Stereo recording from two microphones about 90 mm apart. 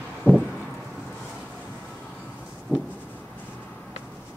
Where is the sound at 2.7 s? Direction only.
25° left (ahead or behind).